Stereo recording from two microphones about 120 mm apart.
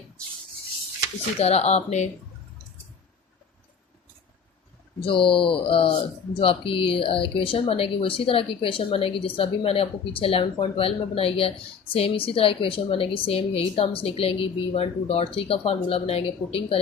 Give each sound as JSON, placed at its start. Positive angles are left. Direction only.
{"t": 1.4, "sound": "speech", "side_deg": 65}
{"t": 5.0, "sound": "speech", "side_deg": 50}